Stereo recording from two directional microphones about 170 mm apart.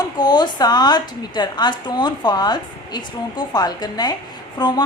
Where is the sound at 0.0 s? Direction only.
25° left (ahead or behind).